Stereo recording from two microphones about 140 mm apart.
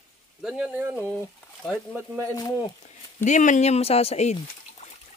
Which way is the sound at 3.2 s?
60° left (ahead or behind).